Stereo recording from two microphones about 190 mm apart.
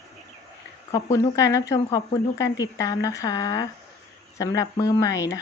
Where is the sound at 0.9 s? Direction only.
20° left (ahead or behind).